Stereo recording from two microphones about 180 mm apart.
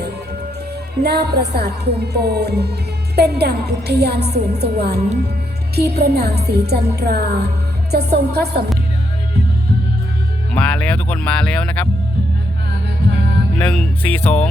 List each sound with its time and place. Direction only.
1.0 s a woman's voice: 65° right (ahead or behind)
10.5 s speech: 5° left (ahead or behind)
13.6 s speech: 5° left (ahead or behind)